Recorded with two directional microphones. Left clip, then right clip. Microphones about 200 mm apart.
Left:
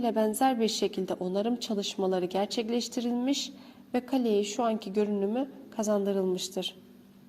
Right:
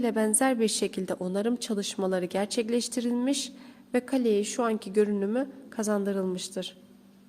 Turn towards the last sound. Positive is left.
turn(degrees=-20)  # may be behind; listen again after turning